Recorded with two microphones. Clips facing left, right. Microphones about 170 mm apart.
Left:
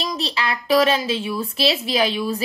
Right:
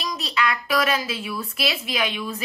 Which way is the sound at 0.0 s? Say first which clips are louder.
Left 1 dB; 30° left (ahead or behind).